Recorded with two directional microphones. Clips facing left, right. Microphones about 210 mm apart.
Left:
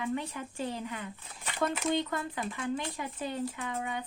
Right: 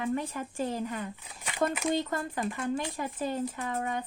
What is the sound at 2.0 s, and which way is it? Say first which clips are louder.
Speech: right 3 dB; 45° right (ahead or behind).